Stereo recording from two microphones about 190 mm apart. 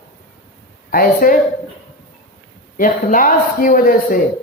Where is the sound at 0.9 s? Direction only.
50° left (ahead or behind).